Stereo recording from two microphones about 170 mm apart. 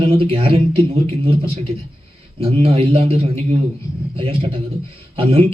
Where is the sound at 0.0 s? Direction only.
35° right (ahead or behind).